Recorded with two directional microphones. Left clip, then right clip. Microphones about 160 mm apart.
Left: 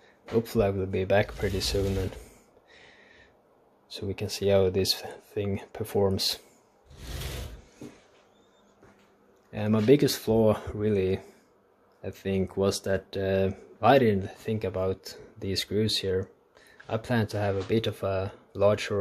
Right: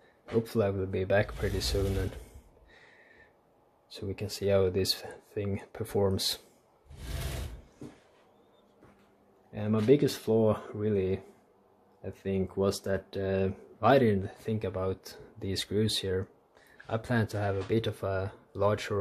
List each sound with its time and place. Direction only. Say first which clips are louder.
0.2 s speech: left 3 dB; 10° left (ahead or behind)
2.7 s a sound: left 3 dB; 10° left (ahead or behind)
3.9 s speech: left 4 dB; 10° left (ahead or behind)
9.5 s speech: left 3 dB; 20° left (ahead or behind)